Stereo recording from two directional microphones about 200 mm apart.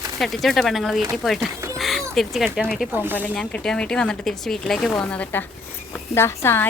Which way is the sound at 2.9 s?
10° right (ahead or behind).